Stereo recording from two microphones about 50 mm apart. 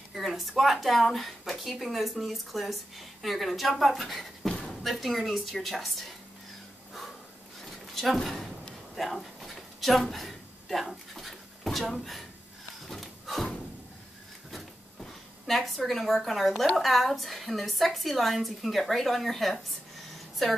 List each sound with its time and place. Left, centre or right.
0.1 s speech: centre
7.8 s a sound: centre
14.5 s a woman's voice: centre